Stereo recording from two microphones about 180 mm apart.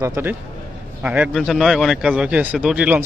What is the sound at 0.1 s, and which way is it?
A man's voice, 10° right (ahead or behind).